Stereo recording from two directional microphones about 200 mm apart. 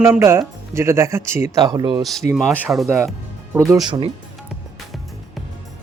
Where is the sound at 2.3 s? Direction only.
5° right (ahead or behind).